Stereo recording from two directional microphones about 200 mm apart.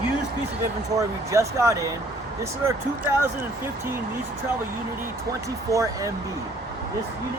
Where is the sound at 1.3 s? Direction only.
15° right (ahead or behind).